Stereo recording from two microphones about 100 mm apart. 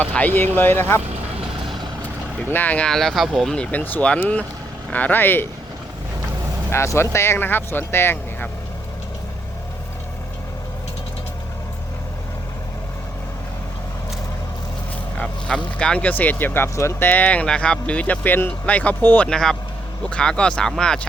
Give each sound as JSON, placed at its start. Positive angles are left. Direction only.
{"t": 0.0, "sound": "speech", "side_deg": 15}
{"t": 2.5, "sound": "speech", "side_deg": 20}
{"t": 6.7, "sound": "speech", "side_deg": 25}
{"t": 15.2, "sound": "speech", "side_deg": 10}